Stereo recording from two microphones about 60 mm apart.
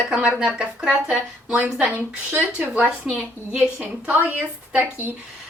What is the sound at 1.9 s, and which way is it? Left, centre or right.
A woman's voice, right.